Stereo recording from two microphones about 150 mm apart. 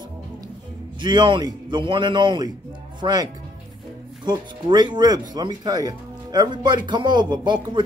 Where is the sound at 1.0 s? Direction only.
30° right (ahead or behind).